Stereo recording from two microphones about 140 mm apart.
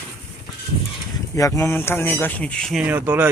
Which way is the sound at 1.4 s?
20° left (ahead or behind).